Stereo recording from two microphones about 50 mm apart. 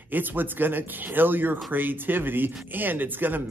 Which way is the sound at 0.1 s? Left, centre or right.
Right.